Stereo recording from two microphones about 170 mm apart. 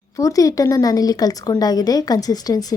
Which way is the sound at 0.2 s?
20° left (ahead or behind).